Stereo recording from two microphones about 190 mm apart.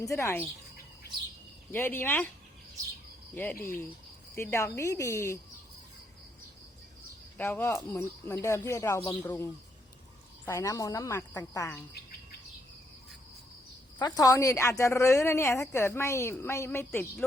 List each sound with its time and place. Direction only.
0.0 s speech: 15° left (ahead or behind)
1.7 s speech: 10° left (ahead or behind)
3.6 s speech: 10° left (ahead or behind)
7.3 s speech: 10° left (ahead or behind)
14.0 s speech: 20° left (ahead or behind)